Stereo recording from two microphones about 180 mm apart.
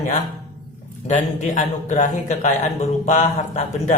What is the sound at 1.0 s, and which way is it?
A man's voice, 45° left (ahead or behind).